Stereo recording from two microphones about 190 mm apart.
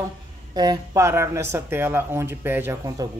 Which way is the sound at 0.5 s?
20° right (ahead or behind).